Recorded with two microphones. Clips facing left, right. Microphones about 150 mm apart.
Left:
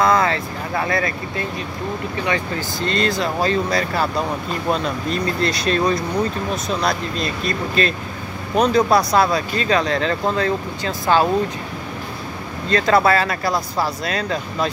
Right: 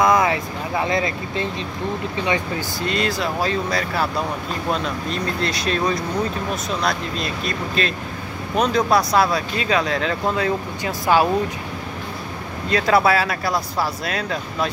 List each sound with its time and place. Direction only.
0.0 s speech: 15° right (ahead or behind)
2.9 s speech: 5° right (ahead or behind)
12.6 s speech: 5° right (ahead or behind)